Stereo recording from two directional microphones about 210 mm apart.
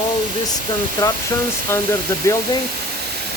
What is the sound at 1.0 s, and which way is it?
Speech, 15° left (ahead or behind).